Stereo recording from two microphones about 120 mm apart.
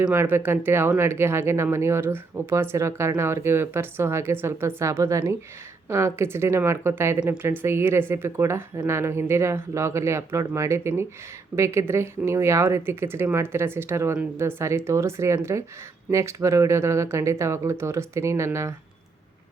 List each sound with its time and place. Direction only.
0.0 s speech: 15° right (ahead or behind)